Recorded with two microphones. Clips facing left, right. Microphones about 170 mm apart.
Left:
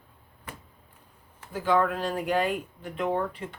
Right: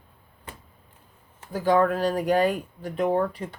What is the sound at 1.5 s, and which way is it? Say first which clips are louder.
Speech: right 4 dB; 40° right (ahead or behind).